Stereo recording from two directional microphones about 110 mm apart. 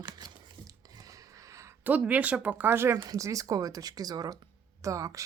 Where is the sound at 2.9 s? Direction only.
30° right (ahead or behind).